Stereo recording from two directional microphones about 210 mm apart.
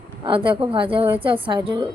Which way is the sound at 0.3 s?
25° right (ahead or behind).